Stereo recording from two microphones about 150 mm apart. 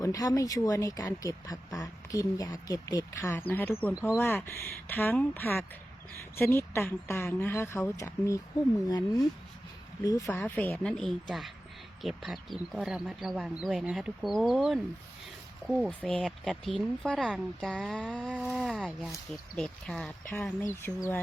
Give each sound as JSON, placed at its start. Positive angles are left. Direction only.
{"t": 0.0, "sound": "speech", "side_deg": 25}
{"t": 10.3, "sound": "speech", "side_deg": 10}
{"t": 20.2, "sound": "speech", "side_deg": 15}